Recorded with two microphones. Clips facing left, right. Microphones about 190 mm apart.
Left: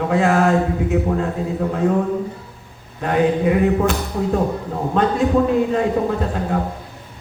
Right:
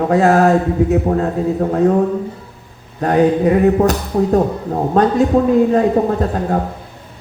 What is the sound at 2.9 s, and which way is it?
A man's voice, 40° right (ahead or behind).